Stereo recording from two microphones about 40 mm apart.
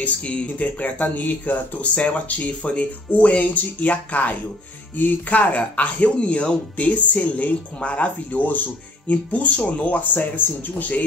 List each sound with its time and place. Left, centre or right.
0.2 s speech: left